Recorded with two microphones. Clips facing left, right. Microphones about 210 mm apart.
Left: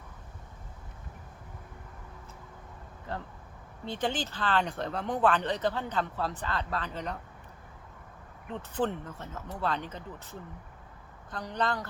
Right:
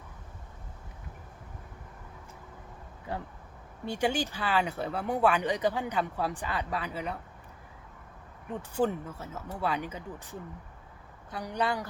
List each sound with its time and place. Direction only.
3.1 s speech: 10° right (ahead or behind)
8.5 s speech: 10° right (ahead or behind)